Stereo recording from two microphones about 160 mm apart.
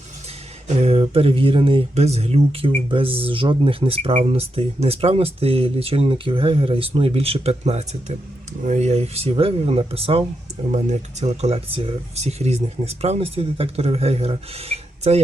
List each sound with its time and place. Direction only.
0.8 s speech: 40° right (ahead or behind)